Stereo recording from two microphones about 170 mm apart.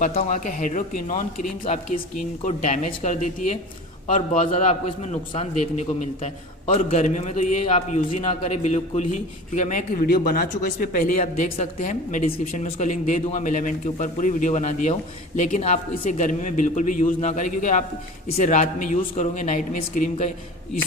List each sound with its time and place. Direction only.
0.0 s a man's voice: 40° left (ahead or behind)
10.1 s speech: 60° left (ahead or behind)